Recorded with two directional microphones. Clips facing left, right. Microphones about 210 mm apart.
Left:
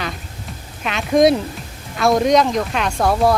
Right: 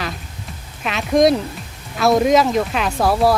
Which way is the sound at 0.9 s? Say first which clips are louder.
Left 1 dB; centre (ahead or behind).